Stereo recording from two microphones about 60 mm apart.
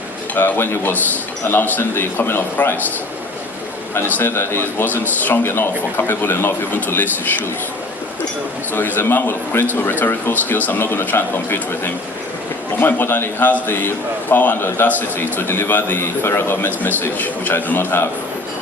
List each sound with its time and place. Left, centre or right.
0.3 s a man's voice: left
4.1 s a man's voice: left
9.0 s a man's voice: left
12.8 s a man's voice: left